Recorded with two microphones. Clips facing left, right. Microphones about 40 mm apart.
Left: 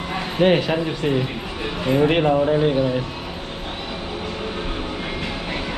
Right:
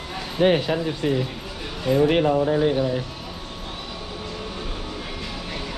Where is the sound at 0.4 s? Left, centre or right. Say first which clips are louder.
Left 2 dB; left.